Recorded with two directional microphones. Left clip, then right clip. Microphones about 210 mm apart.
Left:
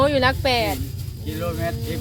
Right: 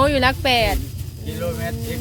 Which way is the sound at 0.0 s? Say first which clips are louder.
Right 1 dB; 10° right (ahead or behind).